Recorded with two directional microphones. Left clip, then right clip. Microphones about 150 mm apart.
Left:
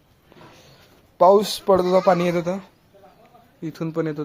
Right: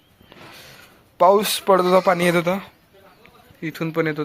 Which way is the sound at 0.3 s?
10° left (ahead or behind).